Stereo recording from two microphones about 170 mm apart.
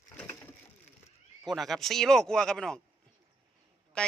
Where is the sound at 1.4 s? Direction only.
Centre (ahead or behind).